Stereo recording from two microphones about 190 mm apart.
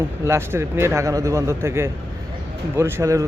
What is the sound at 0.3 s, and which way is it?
Speech, 15° right (ahead or behind).